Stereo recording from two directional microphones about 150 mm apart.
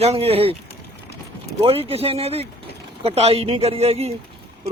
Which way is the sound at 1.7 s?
40° right (ahead or behind).